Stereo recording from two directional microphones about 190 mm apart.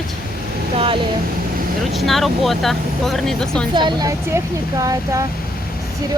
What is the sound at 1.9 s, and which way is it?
Speech, centre (ahead or behind).